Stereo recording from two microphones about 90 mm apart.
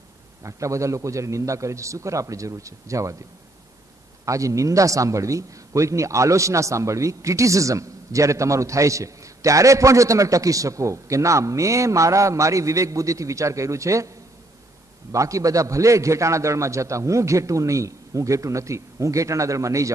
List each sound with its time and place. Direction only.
0.4 s a man's voice: 35° right (ahead or behind)
4.3 s a man's voice: 35° right (ahead or behind)